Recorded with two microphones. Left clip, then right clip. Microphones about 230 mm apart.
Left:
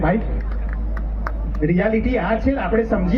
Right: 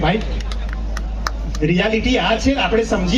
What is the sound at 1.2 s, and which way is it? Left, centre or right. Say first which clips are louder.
Speech: right 2 dB; right.